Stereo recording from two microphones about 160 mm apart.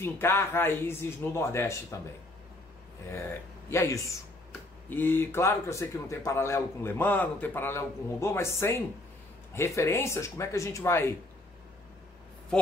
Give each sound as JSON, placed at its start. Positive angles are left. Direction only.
{"t": 0.0, "sound": "a man's voice", "side_deg": 15}
{"t": 3.7, "sound": "a man's voice", "side_deg": 20}